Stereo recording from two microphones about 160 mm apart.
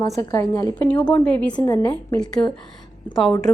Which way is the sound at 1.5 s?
25° left (ahead or behind).